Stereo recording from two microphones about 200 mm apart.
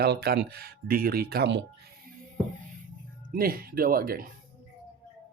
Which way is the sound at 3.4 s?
45° right (ahead or behind).